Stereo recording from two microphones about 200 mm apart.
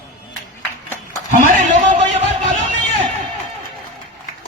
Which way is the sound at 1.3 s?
40° right (ahead or behind).